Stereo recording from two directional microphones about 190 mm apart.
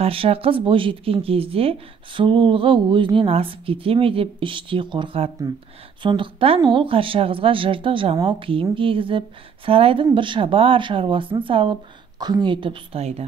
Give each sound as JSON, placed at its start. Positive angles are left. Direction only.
{"t": 0.0, "sound": "speech", "side_deg": -30}